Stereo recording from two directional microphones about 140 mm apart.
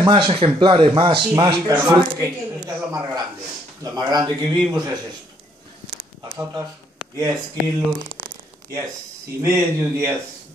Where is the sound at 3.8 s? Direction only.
25° right (ahead or behind).